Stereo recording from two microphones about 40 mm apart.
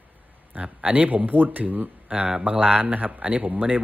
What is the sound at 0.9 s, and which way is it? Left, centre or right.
A man's voice, right.